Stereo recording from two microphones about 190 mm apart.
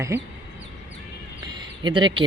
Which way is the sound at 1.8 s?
25° right (ahead or behind).